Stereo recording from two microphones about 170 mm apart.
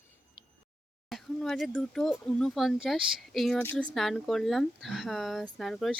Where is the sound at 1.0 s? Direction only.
Centre (ahead or behind).